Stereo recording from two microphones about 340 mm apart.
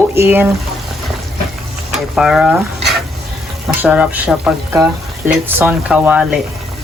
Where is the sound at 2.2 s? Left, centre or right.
Centre.